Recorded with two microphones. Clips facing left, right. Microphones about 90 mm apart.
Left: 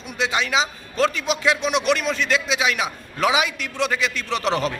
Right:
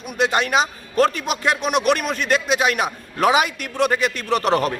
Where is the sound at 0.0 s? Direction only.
55° right (ahead or behind).